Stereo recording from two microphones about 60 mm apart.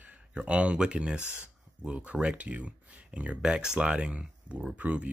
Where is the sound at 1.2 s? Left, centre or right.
Left.